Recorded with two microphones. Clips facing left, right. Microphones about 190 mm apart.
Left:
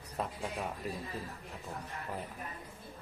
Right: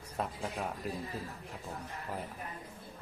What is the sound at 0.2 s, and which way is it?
Speech, centre (ahead or behind).